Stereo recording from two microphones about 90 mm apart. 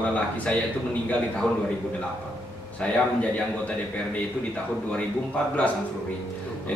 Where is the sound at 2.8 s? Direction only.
15° left (ahead or behind).